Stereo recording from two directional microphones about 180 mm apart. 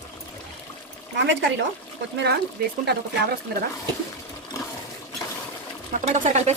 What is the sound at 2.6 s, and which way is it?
Speech, 50° right (ahead or behind).